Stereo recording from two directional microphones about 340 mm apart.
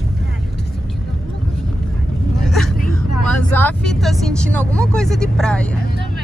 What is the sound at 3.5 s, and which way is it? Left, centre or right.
Speech, centre.